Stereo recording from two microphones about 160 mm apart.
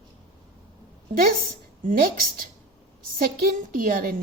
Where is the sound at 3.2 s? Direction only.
65° right (ahead or behind).